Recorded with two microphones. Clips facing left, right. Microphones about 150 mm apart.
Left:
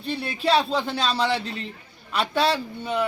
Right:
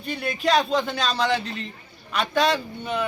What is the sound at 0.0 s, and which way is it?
Speech, 30° left (ahead or behind).